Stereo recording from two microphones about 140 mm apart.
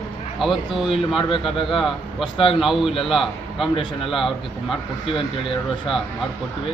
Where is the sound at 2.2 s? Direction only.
35° left (ahead or behind).